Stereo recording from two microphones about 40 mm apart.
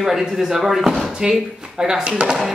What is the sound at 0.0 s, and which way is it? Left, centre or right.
Speech, centre.